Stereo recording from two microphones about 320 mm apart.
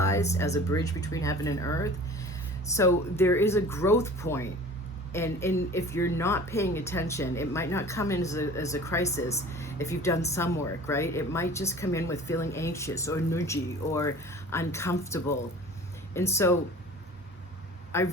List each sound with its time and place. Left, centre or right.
0.0 s speech: centre
17.9 s speech: centre